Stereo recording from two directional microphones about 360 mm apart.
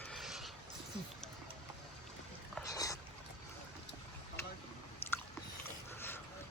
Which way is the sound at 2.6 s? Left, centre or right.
Centre.